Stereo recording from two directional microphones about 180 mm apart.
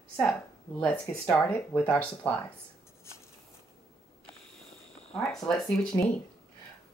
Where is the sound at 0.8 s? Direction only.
5° left (ahead or behind).